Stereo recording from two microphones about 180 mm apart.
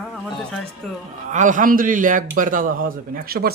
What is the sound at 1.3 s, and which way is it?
A man's voice, 45° right (ahead or behind).